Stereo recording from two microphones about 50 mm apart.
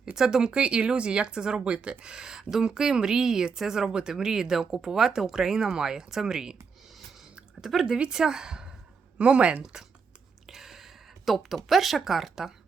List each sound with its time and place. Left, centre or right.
0.0 s speech: centre
0.5 s speech: right
7.6 s speech: centre
7.9 s speech: centre
10.5 s speech: centre